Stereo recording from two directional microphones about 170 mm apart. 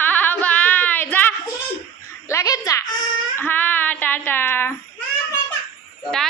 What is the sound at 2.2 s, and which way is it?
Speech, 20° left (ahead or behind).